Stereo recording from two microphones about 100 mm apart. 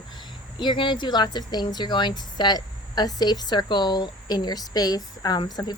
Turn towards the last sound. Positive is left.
turn(degrees=40)  # may be behind; listen again after turning